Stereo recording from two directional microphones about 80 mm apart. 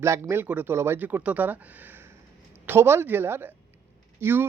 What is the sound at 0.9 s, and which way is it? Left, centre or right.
Speech, right.